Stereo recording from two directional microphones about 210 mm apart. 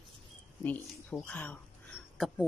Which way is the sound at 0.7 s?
5° left (ahead or behind).